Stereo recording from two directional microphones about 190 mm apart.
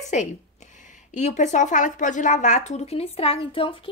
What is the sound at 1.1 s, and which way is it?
Speech, 40° left (ahead or behind).